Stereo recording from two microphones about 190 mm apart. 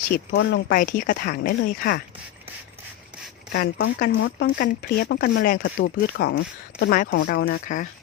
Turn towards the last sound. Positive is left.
turn(degrees=45)  # may be behind; listen again after turning